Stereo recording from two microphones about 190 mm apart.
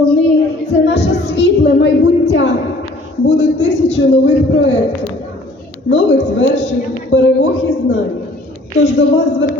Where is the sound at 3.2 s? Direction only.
35° left (ahead or behind).